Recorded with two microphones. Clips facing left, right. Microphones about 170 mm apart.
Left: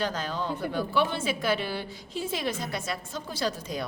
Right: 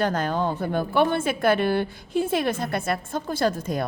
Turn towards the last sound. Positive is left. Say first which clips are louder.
# right 7 dB
turn(degrees=-50)  # may be behind; listen again after turning